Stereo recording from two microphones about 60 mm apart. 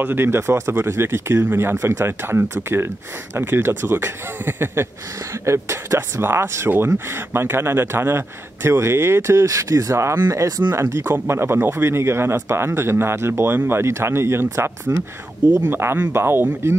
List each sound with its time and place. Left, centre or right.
0.0 s speech: right
5.4 s speech: right